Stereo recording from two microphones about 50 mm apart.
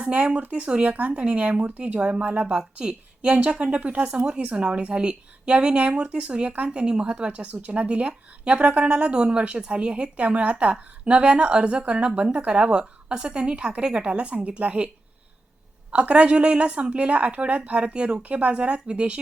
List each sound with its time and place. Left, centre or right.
0.0 s a woman's voice: right
15.9 s a woman's voice: right